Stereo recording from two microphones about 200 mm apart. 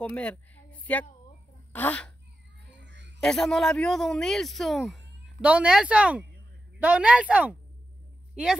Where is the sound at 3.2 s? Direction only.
Centre (ahead or behind).